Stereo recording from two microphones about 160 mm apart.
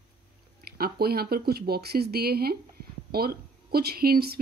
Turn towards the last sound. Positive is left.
turn(degrees=-75)  # may be behind; listen again after turning